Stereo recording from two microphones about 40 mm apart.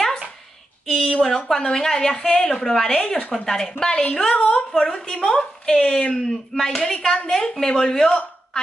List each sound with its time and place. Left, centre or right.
1.2 s a woman's voice: centre
2.9 s a woman's voice: left
3.3 s a woman's voice: centre